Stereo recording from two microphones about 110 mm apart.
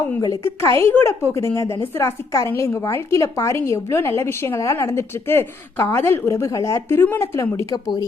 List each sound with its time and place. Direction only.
0.2 s a woman's voice: 30° left (ahead or behind)